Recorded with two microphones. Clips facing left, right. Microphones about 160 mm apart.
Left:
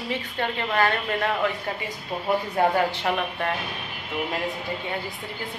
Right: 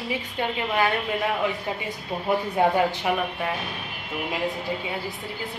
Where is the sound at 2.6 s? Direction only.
20° right (ahead or behind).